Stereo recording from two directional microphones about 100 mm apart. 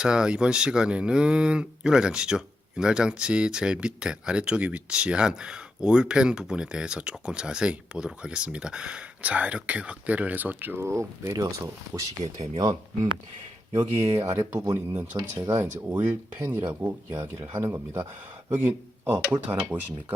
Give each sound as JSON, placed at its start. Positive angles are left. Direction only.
{"t": 0.0, "sound": "speech", "side_deg": -10}
{"t": 13.7, "sound": "speech", "side_deg": -25}
{"t": 15.1, "sound": "speech", "side_deg": -35}